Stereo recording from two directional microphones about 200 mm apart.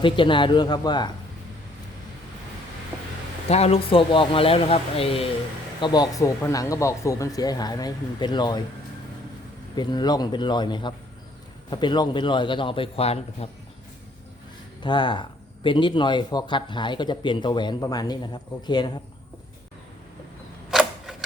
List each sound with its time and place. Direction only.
0.0 s speech: 25° left (ahead or behind)
3.5 s speech: 30° left (ahead or behind)
9.7 s speech: 20° left (ahead or behind)
14.8 s speech: 25° left (ahead or behind)
20.7 s a sound: centre (ahead or behind)